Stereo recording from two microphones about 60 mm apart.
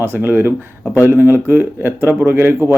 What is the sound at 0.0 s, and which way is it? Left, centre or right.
Speech, right.